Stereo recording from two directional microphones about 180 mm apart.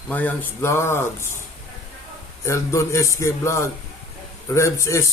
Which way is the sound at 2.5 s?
15° left (ahead or behind).